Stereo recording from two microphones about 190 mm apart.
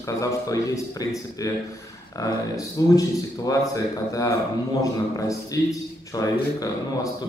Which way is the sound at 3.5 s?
15° left (ahead or behind).